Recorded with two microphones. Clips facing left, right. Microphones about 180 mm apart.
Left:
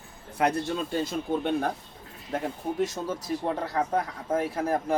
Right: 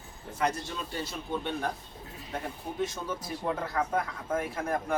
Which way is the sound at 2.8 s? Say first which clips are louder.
Left 1 dB; 35° left (ahead or behind).